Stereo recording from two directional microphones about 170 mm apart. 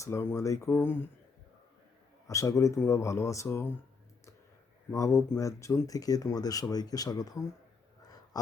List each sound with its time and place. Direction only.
0.0 s speech: 15° left (ahead or behind)
2.2 s speech: 20° left (ahead or behind)
4.9 s speech: 20° left (ahead or behind)